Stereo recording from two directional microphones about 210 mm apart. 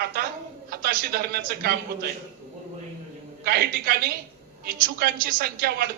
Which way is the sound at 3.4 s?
45° right (ahead or behind).